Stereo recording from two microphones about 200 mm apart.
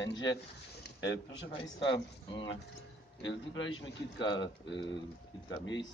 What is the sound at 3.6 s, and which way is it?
Speech, 60° left (ahead or behind).